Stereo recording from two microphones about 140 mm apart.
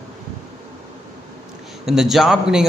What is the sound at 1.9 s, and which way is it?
Speech, 5° right (ahead or behind).